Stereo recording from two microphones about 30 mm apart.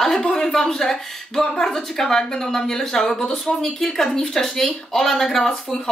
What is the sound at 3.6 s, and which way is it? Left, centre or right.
A woman's voice, centre.